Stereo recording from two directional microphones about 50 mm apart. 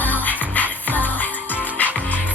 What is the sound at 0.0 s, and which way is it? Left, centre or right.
Music, left.